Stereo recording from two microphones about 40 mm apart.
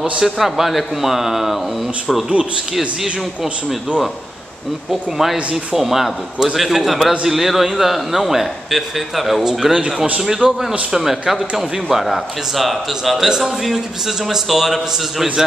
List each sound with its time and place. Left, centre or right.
0.2 s a man's voice: centre
5.1 s a man's voice: centre
9.4 s a man's voice: centre
10.4 s speech: right
10.9 s a man's voice: centre
14.3 s a man's voice: centre